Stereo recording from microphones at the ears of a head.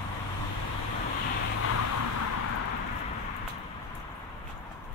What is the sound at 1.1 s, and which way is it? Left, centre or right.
Vehicle, left.